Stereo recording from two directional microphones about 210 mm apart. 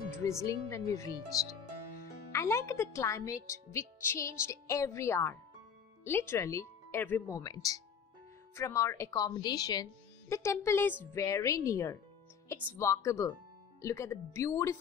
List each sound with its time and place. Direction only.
0.1 s a woman's voice: 15° left (ahead or behind)
2.3 s a woman's voice: 15° left (ahead or behind)